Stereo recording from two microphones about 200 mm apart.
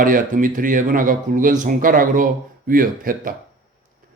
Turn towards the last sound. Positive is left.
turn(degrees=-45)  # may be behind; listen again after turning